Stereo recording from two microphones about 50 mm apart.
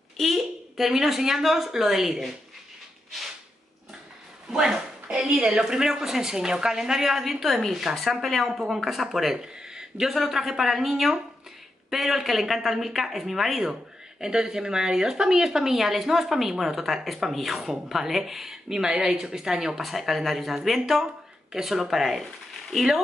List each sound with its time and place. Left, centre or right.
0.2 s speech: centre
4.5 s dog: centre
5.1 s a sound: centre
5.4 s speech: centre
19.8 s speech: centre